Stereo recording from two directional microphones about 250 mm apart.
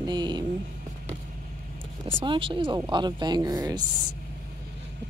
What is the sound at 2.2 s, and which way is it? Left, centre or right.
Speech, centre.